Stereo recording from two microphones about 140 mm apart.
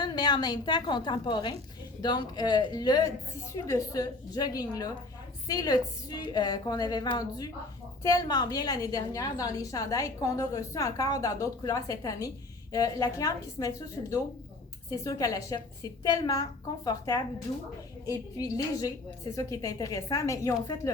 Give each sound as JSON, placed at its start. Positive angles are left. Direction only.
{"t": 0.0, "sound": "a woman's voice", "side_deg": 30}